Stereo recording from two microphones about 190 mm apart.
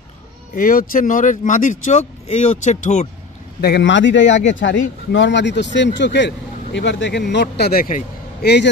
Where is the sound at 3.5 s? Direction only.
60° left (ahead or behind).